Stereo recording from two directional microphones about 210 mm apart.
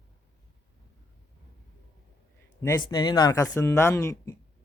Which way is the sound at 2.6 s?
20° left (ahead or behind).